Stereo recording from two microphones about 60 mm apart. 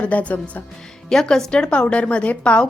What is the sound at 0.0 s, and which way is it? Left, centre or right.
Speech, left.